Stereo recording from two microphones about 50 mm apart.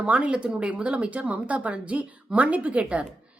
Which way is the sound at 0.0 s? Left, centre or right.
Right.